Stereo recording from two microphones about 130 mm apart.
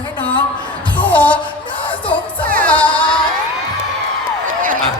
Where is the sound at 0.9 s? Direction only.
10° left (ahead or behind).